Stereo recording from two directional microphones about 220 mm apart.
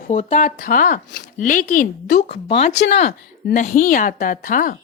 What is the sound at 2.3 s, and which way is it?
A woman's voice, 25° left (ahead or behind).